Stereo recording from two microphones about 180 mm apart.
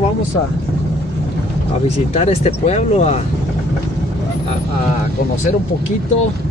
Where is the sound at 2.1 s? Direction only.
35° left (ahead or behind).